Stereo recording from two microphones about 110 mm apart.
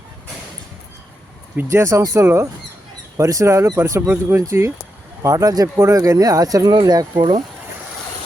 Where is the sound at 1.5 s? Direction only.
25° right (ahead or behind).